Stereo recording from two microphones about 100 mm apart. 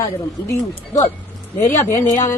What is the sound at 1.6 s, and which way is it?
Speech, 25° left (ahead or behind).